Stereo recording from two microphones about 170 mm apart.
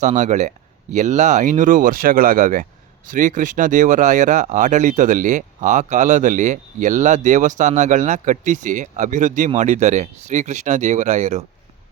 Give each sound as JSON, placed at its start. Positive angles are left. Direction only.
{"t": 0.0, "sound": "speech", "side_deg": -45}